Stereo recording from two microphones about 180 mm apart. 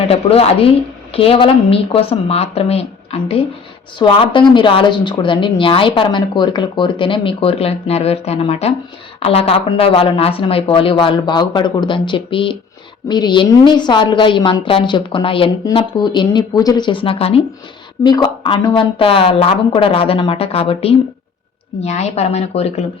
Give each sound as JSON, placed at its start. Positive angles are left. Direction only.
{"t": 0.1, "sound": "speech", "side_deg": 35}